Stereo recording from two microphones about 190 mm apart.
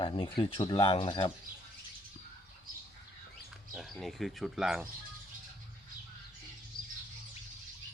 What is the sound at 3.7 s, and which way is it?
Speech, centre (ahead or behind).